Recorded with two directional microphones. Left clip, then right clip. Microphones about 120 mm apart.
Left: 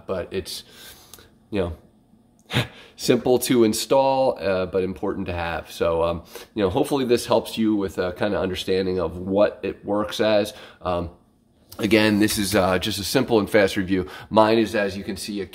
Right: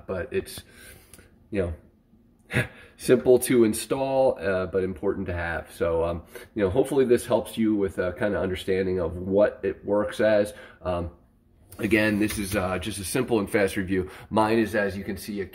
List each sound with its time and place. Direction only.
0.0 s speech: 15° left (ahead or behind)
1.1 s a sound: 25° left (ahead or behind)
2.4 s speech: 25° left (ahead or behind)
11.7 s speech: 35° left (ahead or behind)
12.4 s speech: 70° left (ahead or behind)
12.9 s speech: 35° left (ahead or behind)
14.6 s speech: 10° left (ahead or behind)